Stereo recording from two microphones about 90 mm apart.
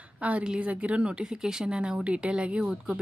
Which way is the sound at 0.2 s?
15° right (ahead or behind).